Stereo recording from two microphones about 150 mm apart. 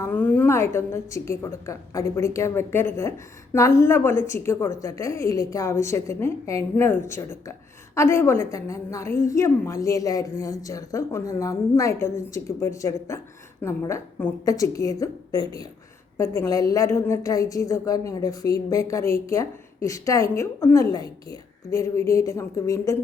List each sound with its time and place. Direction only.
0.1 s a woman's voice: 10° left (ahead or behind)